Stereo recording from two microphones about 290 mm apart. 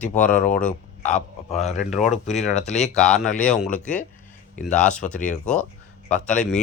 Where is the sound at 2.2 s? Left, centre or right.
Left.